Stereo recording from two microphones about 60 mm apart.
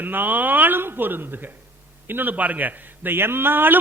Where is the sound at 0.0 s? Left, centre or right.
Right.